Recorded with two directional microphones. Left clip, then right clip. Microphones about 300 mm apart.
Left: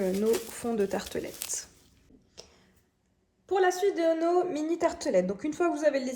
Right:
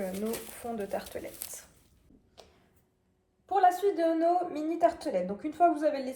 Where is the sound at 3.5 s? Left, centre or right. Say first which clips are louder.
Right 1 dB; left.